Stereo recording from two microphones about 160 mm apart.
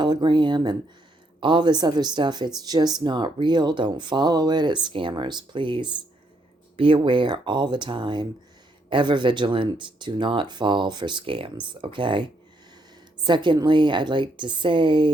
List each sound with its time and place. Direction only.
0.0 s speech: 30° right (ahead or behind)
13.2 s speech: 30° right (ahead or behind)